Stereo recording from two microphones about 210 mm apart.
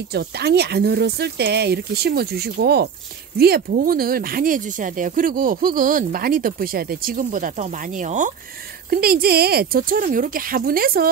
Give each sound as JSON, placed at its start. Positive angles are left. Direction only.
{"t": 0.1, "sound": "speech", "side_deg": -50}